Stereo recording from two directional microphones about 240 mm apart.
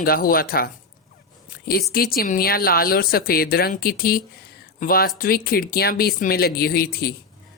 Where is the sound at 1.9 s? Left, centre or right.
Left.